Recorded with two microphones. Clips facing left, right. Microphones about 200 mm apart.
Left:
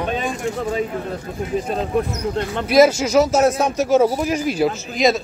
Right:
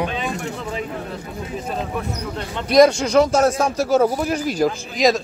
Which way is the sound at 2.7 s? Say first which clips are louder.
Even; 5° left (ahead or behind).